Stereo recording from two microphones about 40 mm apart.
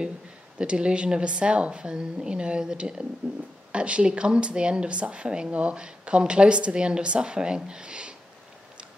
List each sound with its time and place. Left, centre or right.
0.6 s speech: right